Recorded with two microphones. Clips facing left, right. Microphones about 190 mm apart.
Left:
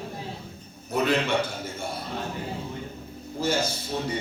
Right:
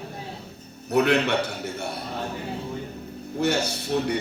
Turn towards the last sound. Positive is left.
turn(degrees=-70)  # may be behind; listen again after turning